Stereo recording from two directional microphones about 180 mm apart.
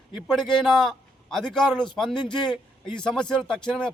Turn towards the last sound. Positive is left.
turn(degrees=5)  # may be behind; listen again after turning